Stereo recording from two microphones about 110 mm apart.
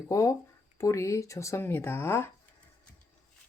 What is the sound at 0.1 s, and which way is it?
Speech, 30° left (ahead or behind).